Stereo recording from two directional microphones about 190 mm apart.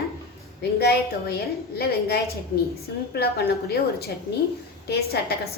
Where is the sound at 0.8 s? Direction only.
55° left (ahead or behind).